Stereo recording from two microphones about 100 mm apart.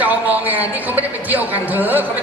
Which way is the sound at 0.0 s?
15° right (ahead or behind).